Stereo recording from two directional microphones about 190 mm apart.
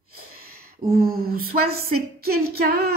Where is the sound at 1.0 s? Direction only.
50° right (ahead or behind).